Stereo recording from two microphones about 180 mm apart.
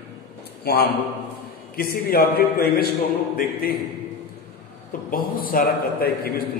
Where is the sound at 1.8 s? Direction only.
60° left (ahead or behind).